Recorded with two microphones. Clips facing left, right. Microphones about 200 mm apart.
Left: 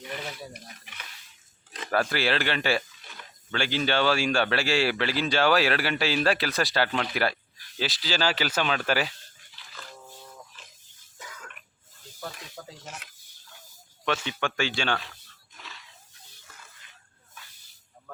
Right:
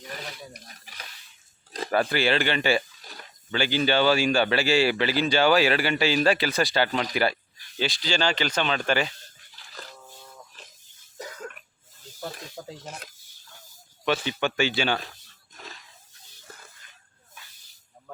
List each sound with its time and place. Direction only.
0.7 s a sound: 35° right (ahead or behind)
1.9 s speech: centre (ahead or behind)
9.6 s music: 40° right (ahead or behind)
11.2 s cough: 40° right (ahead or behind)
12.8 s speech: 35° right (ahead or behind)
14.4 s speech: 5° right (ahead or behind)
15.5 s wild animals: 40° right (ahead or behind)